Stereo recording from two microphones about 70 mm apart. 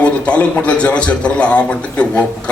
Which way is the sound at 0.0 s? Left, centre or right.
Centre.